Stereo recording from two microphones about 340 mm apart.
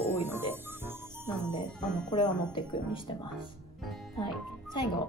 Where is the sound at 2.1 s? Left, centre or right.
Centre.